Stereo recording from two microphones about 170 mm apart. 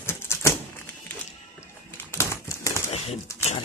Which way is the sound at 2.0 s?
15° left (ahead or behind).